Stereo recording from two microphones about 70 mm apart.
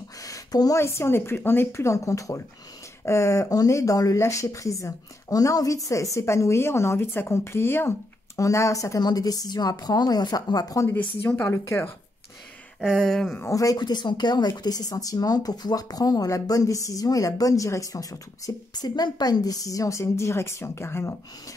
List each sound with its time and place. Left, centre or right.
0.2 s a sound: left
0.7 s speech: left
8.4 s speech: left
9.0 s a woman's voice: left
11.5 s speech: left
12.8 s speech: centre
13.5 s speech: left
13.7 s speech: left
14.6 s speech: left
18.7 s speech: left